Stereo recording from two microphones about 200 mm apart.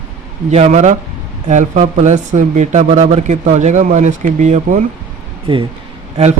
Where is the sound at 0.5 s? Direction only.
35° right (ahead or behind).